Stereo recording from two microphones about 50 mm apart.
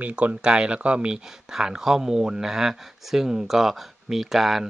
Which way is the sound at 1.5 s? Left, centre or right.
Centre.